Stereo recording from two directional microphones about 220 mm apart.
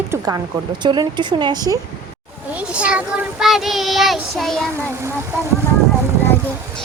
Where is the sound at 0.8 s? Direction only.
20° right (ahead or behind).